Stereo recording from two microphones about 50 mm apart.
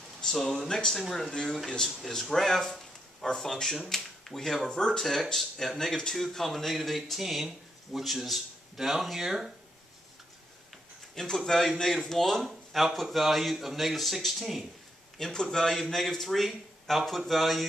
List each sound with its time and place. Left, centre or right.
0.2 s speech: centre
2.0 s a man's voice: centre
11.1 s a man's voice: centre